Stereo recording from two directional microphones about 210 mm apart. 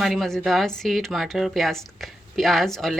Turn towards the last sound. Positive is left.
turn(degrees=0)  # may be behind; listen again after turning